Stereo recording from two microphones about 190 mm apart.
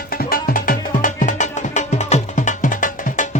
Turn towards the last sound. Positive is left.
turn(degrees=40)  # may be behind; listen again after turning